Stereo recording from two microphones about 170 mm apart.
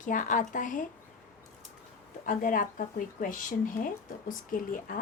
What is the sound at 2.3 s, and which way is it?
A woman's voice, 50° left (ahead or behind).